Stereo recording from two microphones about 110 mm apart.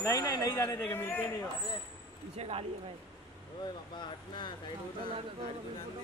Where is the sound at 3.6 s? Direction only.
45° left (ahead or behind).